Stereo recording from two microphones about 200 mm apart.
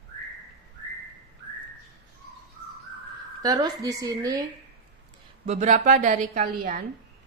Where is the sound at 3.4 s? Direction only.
20° right (ahead or behind).